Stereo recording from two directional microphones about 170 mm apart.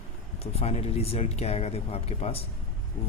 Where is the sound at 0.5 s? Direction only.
35° left (ahead or behind).